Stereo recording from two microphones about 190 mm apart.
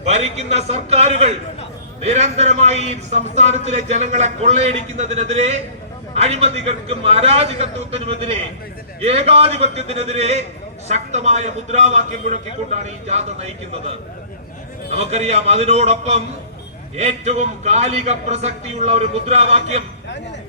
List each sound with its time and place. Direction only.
0.1 s a man's voice: 35° right (ahead or behind)
14.9 s a man's voice: 35° right (ahead or behind)